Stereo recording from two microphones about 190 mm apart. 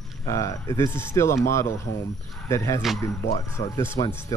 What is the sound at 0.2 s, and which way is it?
Speech, 15° left (ahead or behind).